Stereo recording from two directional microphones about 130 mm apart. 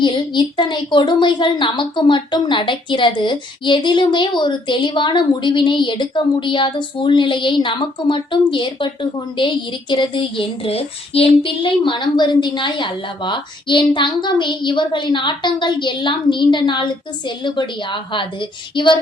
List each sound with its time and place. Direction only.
0.0 s a woman's voice: 35° left (ahead or behind)